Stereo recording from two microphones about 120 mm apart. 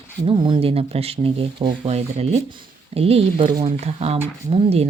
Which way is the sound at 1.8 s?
65° right (ahead or behind).